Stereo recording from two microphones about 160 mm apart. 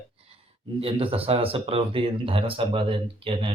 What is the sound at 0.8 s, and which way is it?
Speech, 35° right (ahead or behind).